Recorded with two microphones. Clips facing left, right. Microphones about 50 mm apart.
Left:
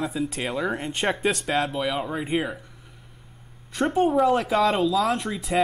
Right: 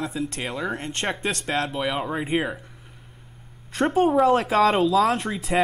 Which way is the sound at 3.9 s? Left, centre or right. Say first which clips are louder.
Right 2 dB; centre.